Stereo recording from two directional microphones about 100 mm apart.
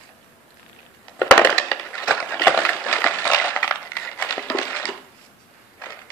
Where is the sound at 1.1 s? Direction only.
20° left (ahead or behind).